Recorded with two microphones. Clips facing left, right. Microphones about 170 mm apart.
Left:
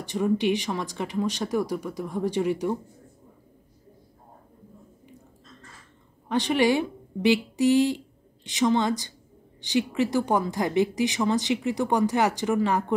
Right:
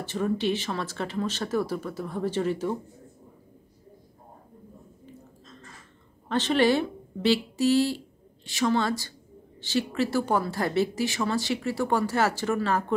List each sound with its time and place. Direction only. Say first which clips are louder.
0.0 s a woman's voice: left 3 dB; 15° left (ahead or behind)
6.2 s a woman's voice: even; 15° left (ahead or behind)